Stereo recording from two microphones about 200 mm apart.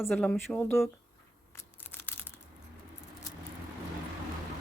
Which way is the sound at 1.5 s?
10° left (ahead or behind).